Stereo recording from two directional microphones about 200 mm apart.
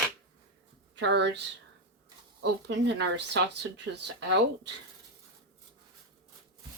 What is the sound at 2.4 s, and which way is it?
Speech, 60° right (ahead or behind).